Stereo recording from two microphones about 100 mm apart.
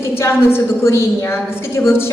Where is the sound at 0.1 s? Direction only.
25° left (ahead or behind).